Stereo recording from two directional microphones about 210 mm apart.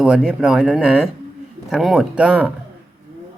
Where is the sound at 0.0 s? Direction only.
5° right (ahead or behind).